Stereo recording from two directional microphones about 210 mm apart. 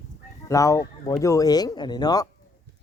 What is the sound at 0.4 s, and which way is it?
Speech, 15° left (ahead or behind).